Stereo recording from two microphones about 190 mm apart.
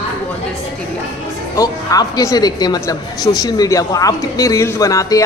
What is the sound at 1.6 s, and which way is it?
A woman's voice, 20° left (ahead or behind).